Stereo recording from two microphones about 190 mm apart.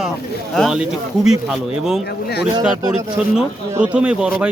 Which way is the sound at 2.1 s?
60° left (ahead or behind).